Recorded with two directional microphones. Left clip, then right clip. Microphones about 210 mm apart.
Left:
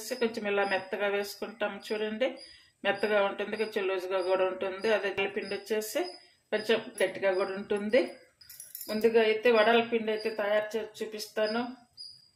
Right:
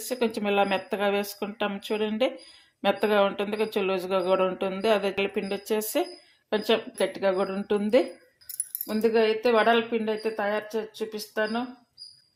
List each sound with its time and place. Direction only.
0.1 s speech: 35° right (ahead or behind)